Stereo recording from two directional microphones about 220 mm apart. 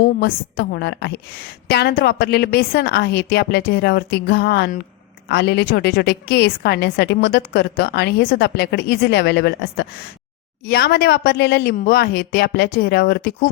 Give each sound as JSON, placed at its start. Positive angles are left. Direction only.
{"t": 0.2, "sound": "a woman's voice", "side_deg": 45}